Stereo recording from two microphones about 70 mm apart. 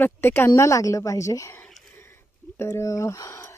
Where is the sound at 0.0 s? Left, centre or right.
Left.